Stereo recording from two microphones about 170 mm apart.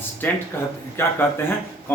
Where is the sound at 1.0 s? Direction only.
15° left (ahead or behind).